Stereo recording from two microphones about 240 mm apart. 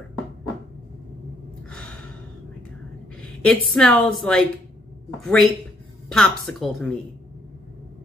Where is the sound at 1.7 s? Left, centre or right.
Centre.